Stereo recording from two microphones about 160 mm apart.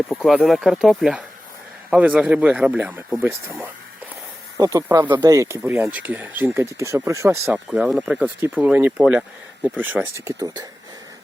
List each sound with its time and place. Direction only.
0.3 s speech: centre (ahead or behind); by 10.7 s 25° right (ahead or behind)